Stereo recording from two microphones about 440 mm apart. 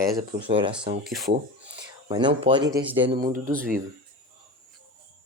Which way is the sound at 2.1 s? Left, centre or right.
Centre.